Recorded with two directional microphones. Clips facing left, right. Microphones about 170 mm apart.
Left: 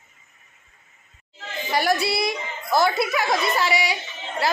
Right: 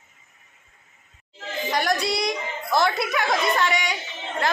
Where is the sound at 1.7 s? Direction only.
5° left (ahead or behind).